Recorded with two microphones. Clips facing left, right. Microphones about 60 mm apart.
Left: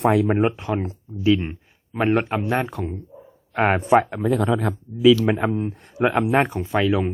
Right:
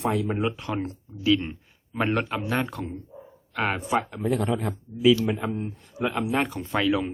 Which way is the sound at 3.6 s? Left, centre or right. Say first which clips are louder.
Left 8 dB; left.